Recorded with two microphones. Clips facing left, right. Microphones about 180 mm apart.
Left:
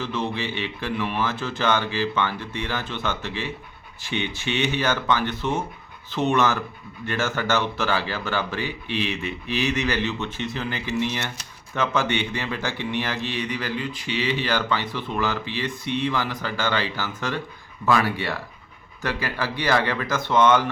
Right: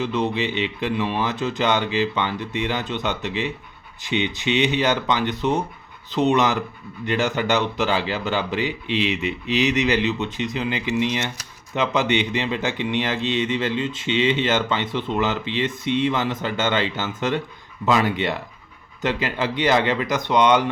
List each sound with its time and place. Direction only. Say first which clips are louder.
0.0 s speech: right 5 dB; 20° right (ahead or behind)